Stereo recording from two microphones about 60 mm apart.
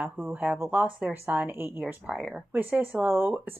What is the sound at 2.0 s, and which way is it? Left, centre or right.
Speech, centre.